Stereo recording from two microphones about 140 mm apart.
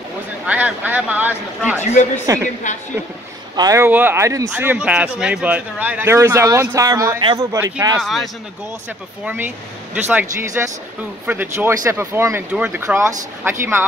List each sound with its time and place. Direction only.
0.5 s speech: 10° right (ahead or behind)
1.8 s speech: 55° left (ahead or behind)
2.3 s speech: 25° right (ahead or behind)
3.5 s speech: 25° right (ahead or behind)
3.8 s speech: 15° right (ahead or behind)
8.0 s speech: centre (ahead or behind)
9.2 s speech: 10° right (ahead or behind)